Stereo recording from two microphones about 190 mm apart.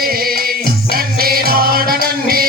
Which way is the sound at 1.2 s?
50° right (ahead or behind).